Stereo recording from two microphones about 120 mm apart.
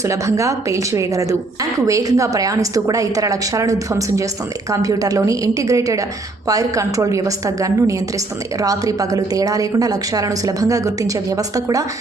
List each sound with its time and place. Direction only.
0.0 s speech: 25° right (ahead or behind)